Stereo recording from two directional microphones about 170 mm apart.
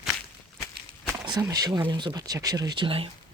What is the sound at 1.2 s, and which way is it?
Speech, 20° right (ahead or behind).